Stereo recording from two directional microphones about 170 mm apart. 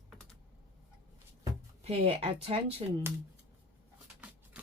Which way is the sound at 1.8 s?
35° right (ahead or behind).